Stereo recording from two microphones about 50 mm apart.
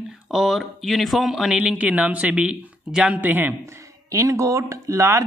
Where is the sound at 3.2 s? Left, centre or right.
Right.